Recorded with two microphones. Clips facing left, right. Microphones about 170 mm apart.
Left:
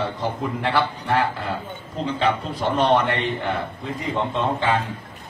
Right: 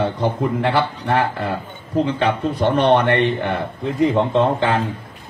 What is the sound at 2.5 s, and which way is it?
A man's voice, 65° right (ahead or behind).